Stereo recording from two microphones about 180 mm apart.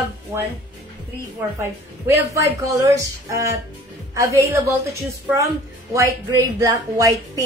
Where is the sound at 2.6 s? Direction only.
15° right (ahead or behind).